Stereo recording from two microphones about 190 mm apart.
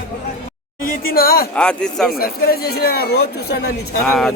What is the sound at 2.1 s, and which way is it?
Speech, 50° left (ahead or behind).